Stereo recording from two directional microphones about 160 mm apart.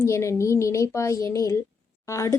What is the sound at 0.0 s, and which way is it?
A woman's voice, 20° left (ahead or behind).